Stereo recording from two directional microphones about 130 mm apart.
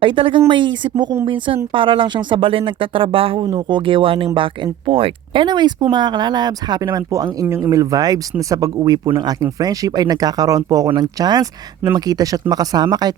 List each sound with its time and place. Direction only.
0.0 s speech: 40° right (ahead or behind)